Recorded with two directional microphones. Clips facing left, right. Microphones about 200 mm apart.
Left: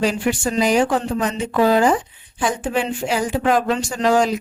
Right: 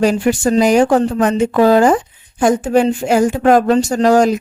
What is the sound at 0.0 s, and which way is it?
Speech, 45° right (ahead or behind).